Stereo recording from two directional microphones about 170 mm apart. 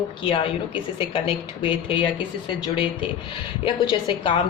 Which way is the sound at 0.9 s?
30° left (ahead or behind).